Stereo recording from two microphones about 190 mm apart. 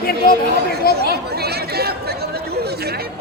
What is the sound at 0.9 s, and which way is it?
Chatter, 50° left (ahead or behind).